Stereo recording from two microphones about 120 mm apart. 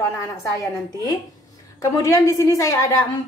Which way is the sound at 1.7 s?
25° left (ahead or behind).